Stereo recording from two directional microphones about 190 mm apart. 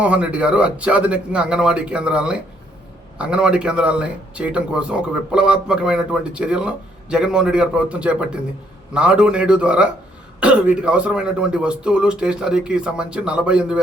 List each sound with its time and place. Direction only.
0.0 s speech: 5° right (ahead or behind)